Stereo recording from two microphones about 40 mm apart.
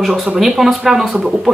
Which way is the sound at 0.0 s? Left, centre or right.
Centre.